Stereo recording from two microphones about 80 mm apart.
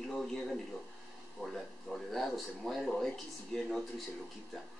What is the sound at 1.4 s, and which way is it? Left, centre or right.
Speech, centre.